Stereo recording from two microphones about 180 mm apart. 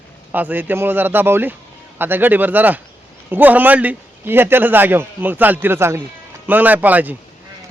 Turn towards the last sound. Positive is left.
turn(degrees=-10)  # may be behind; listen again after turning